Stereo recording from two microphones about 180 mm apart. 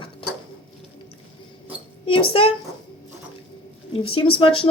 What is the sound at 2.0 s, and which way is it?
Speech, 30° left (ahead or behind).